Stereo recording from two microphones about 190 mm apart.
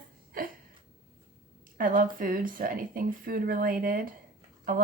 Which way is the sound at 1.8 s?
45° right (ahead or behind).